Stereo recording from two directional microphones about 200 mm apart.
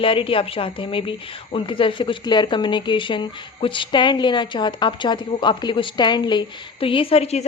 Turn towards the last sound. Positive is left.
turn(degrees=30)  # may be behind; listen again after turning